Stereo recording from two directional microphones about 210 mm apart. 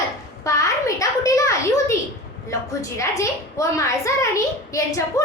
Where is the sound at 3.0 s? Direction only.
15° left (ahead or behind).